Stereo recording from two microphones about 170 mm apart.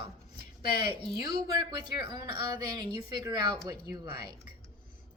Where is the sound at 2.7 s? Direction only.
25° right (ahead or behind).